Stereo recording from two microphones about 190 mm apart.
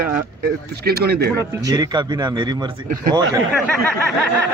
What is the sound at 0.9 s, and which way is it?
Speech, 55° right (ahead or behind).